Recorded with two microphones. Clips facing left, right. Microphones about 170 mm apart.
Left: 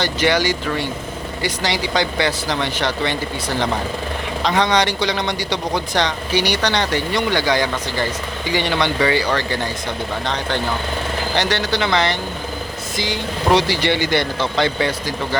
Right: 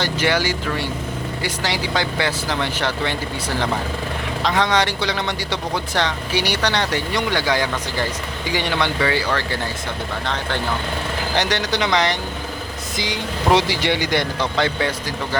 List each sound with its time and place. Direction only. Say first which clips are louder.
0.0 s speech: left 2 dB; 10° right (ahead or behind)
4.4 s speech: left 2 dB; centre (ahead or behind); by 13.7 s 20° right (ahead or behind)
13.7 s speech: left 2 dB; centre (ahead or behind)